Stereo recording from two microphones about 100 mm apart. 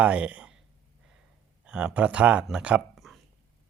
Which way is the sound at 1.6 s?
10° right (ahead or behind).